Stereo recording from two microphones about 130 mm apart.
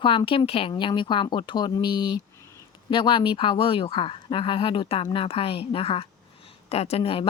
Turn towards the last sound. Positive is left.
turn(degrees=45)  # may be behind; listen again after turning